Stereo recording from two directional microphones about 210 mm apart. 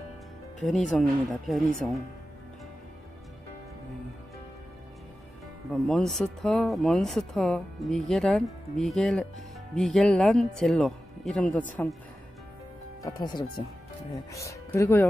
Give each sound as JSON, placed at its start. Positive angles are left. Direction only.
{"t": 0.6, "sound": "speech", "side_deg": 0}
{"t": 5.7, "sound": "speech", "side_deg": 0}
{"t": 13.0, "sound": "speech", "side_deg": 20}